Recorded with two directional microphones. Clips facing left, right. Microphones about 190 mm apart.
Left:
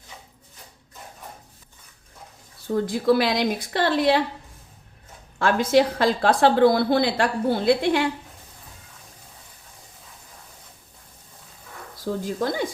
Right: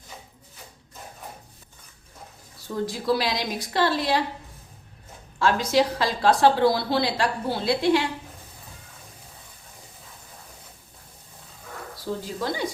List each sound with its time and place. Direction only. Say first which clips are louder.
2.6 s a woman's voice: left 5 dB; 55° left (ahead or behind)
5.4 s a woman's voice: left 3 dB; 55° left (ahead or behind)
12.2 s a woman's voice: left 6 dB; 50° left (ahead or behind)